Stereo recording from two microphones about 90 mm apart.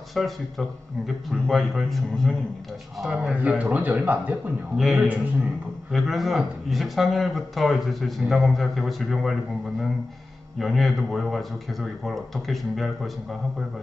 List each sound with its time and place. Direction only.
0.1 s a man's voice: centre (ahead or behind); by 4.4 s 15° right (ahead or behind)
4.7 s a man's voice: 5° right (ahead or behind)
5.0 s speech: 15° right (ahead or behind)
5.9 s a man's voice: centre (ahead or behind)